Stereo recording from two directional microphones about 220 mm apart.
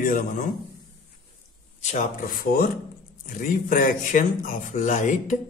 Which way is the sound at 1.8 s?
35° left (ahead or behind).